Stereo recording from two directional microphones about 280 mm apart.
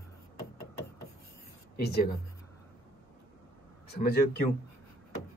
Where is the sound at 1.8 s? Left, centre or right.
Left.